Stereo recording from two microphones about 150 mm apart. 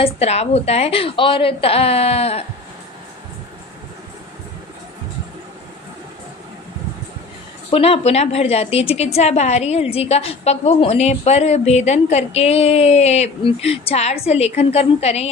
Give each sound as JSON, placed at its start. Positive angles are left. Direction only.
{"t": 0.0, "sound": "a woman's voice", "side_deg": 45}
{"t": 7.7, "sound": "a woman's voice", "side_deg": 40}